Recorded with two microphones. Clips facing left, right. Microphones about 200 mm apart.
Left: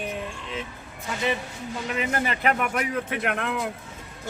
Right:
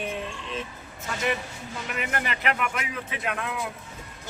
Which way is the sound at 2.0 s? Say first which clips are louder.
Left 4 dB; 30° left (ahead or behind).